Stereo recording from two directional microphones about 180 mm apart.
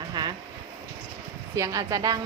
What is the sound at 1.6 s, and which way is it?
Speech, 20° right (ahead or behind).